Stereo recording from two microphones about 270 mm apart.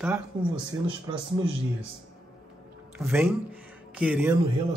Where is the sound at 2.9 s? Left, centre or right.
Centre.